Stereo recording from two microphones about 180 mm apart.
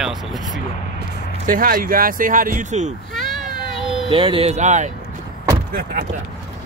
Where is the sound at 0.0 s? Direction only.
Centre (ahead or behind).